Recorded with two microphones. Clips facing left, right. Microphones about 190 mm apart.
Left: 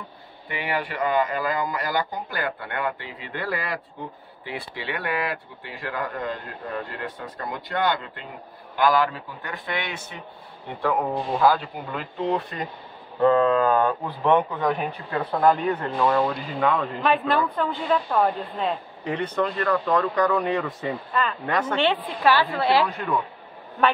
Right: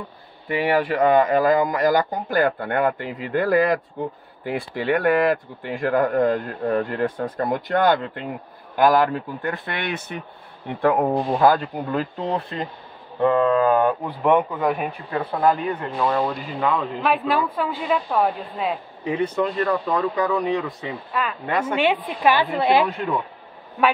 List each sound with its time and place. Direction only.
0.5 s speech: 40° right (ahead or behind)
1.0 s a man's voice: 50° right (ahead or behind)
11.4 s speech: 40° right (ahead or behind)
13.2 s speech: 10° right (ahead or behind)